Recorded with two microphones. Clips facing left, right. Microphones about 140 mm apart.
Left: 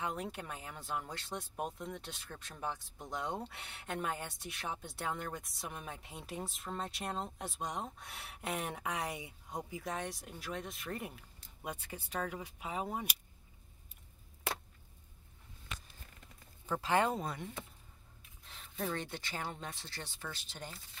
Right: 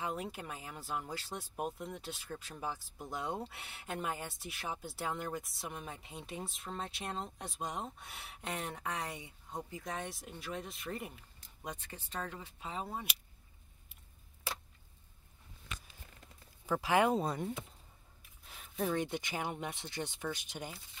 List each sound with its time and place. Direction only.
0.0 s speech: 5° right (ahead or behind); by 13.0 s 10° left (ahead or behind)
16.8 s speech: 10° right (ahead or behind)
17.2 s speech: 35° right (ahead or behind)
18.4 s speech: 5° right (ahead or behind)